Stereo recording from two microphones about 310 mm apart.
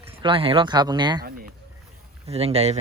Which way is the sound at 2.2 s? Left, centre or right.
Centre.